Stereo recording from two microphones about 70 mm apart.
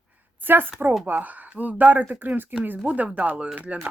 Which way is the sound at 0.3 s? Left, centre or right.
Right.